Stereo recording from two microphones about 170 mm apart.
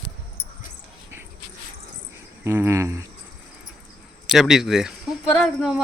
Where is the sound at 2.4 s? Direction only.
15° right (ahead or behind).